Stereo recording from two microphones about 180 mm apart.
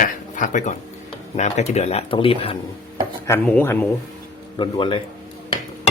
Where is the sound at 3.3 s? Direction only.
10° left (ahead or behind).